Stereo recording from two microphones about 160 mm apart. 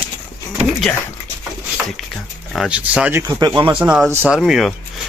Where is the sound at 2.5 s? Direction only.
5° right (ahead or behind).